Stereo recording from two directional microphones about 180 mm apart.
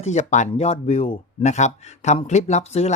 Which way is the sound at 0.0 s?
40° left (ahead or behind).